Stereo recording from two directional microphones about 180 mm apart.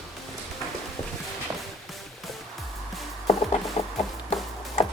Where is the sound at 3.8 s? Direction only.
35° left (ahead or behind).